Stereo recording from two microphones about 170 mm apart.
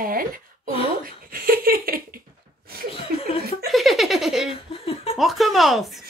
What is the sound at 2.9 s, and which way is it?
Chuckle, 35° left (ahead or behind).